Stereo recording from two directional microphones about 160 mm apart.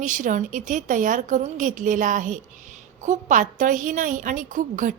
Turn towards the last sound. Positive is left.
turn(degrees=-55)  # may be behind; listen again after turning